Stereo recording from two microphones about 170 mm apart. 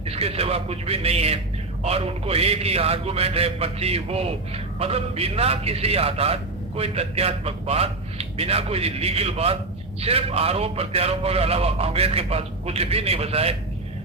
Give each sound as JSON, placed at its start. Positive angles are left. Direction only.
{"t": 0.0, "sound": "a man's voice", "side_deg": -35}